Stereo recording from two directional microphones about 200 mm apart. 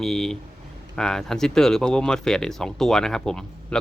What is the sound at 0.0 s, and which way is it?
Speech, centre (ahead or behind).